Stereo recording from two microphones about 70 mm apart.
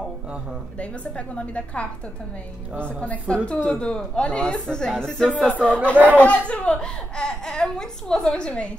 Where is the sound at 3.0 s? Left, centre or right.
Centre.